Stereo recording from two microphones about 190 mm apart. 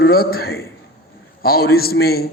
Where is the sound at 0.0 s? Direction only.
55° left (ahead or behind).